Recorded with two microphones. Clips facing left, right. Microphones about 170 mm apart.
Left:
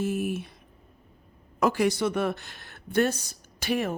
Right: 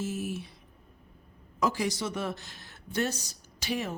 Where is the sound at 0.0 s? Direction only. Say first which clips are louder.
Left 5 dB; 60° left (ahead or behind).